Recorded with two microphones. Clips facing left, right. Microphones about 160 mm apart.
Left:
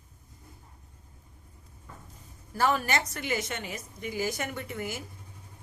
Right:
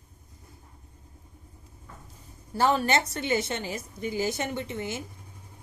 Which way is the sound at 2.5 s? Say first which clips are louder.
Right 3 dB; 30° right (ahead or behind).